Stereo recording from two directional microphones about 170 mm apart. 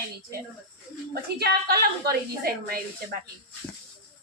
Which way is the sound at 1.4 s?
65° right (ahead or behind).